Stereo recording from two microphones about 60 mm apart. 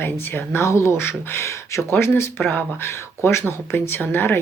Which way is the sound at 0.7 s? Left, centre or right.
Left.